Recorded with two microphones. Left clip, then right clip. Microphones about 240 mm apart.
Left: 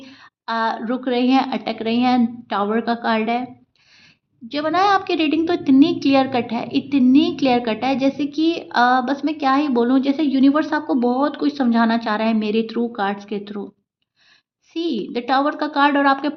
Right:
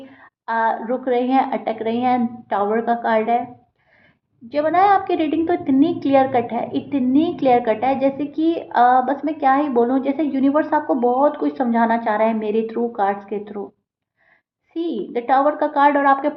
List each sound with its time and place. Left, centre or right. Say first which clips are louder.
0.1 s speech: right 1 dB; left
4.5 s speech: right 2 dB; left
14.8 s speech: even; left